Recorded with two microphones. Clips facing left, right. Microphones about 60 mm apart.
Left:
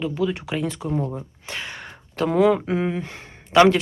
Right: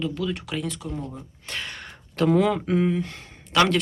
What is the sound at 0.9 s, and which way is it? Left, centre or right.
Speech, left.